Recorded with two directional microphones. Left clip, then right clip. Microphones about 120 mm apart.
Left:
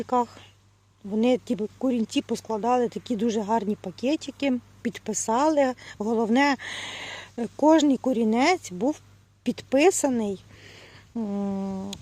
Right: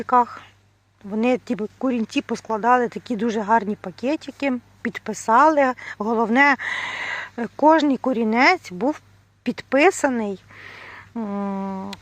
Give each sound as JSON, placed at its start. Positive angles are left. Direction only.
{"t": 0.0, "sound": "speech", "side_deg": 15}
{"t": 10.5, "sound": "a sound", "side_deg": 20}
{"t": 11.3, "sound": "speech", "side_deg": 20}